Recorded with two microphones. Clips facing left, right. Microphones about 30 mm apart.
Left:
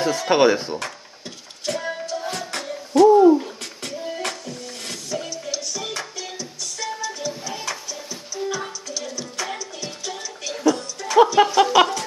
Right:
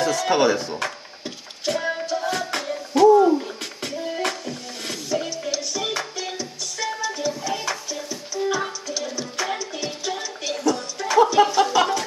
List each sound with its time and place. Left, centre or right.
0.0 s speech: centre
1.7 s music: centre
11.3 s music: centre